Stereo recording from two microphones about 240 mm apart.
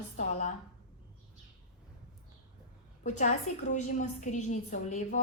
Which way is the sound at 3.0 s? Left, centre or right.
Left.